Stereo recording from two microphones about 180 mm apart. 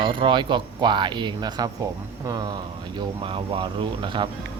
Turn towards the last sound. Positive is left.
turn(degrees=-25)  # may be behind; listen again after turning